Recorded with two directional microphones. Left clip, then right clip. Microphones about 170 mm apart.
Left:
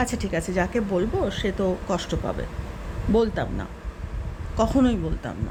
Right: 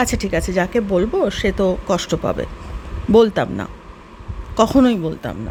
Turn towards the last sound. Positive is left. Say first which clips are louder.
# right 7 dB
turn(degrees=-35)  # may be behind; listen again after turning